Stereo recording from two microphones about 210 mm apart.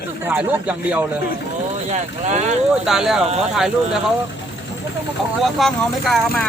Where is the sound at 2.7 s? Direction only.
Centre (ahead or behind).